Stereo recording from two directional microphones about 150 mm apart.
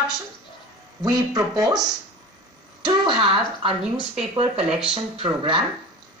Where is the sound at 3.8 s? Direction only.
5° right (ahead or behind).